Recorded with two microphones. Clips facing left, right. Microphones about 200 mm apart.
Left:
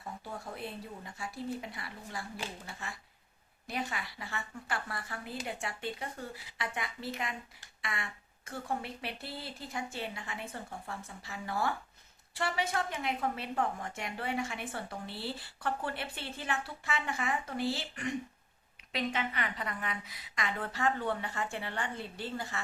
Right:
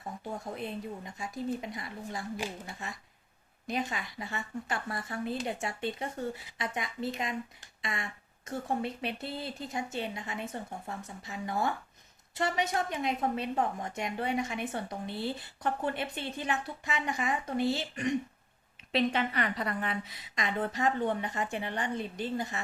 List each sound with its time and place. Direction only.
0.3 s a woman's voice: 20° right (ahead or behind)
18.9 s a woman's voice: 35° right (ahead or behind)